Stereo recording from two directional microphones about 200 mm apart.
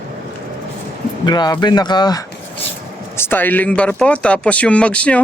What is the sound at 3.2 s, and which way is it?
Speech, 10° left (ahead or behind).